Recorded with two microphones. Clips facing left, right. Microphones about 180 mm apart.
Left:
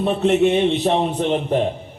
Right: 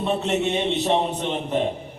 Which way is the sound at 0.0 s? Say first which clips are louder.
Left 7 dB; 55° left (ahead or behind).